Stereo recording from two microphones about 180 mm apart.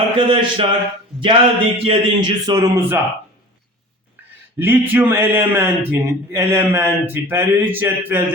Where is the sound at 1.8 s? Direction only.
25° right (ahead or behind).